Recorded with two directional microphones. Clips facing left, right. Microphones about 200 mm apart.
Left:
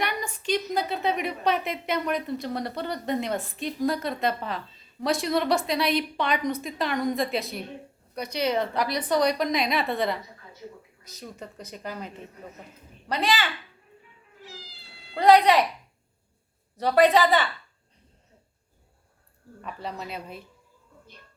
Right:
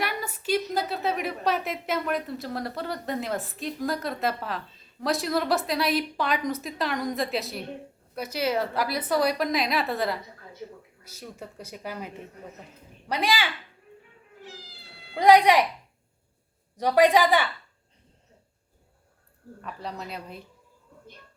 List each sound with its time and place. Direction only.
0.0 s a woman's voice: 5° right (ahead or behind)
14.4 s cat: 55° right (ahead or behind)
15.1 s speech: 10° right (ahead or behind)
16.7 s speech: 10° right (ahead or behind)
19.6 s a woman's voice: centre (ahead or behind)